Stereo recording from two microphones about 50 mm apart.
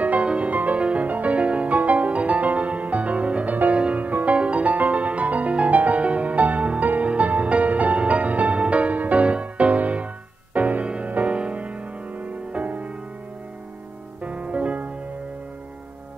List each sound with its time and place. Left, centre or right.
0.0 s music: right
14.2 s music: right